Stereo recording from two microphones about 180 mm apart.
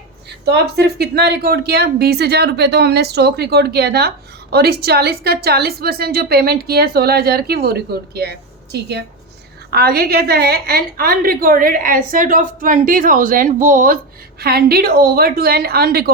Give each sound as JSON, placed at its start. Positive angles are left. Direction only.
{"t": 0.4, "sound": "a woman's voice", "side_deg": -65}
{"t": 14.4, "sound": "a woman's voice", "side_deg": -60}